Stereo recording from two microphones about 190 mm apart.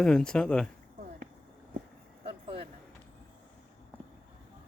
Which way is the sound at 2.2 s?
30° right (ahead or behind).